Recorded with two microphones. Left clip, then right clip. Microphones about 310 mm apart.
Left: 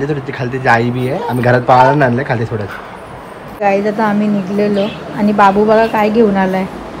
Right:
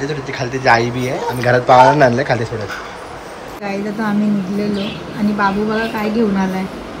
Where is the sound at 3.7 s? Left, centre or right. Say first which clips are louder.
Left 9 dB; centre.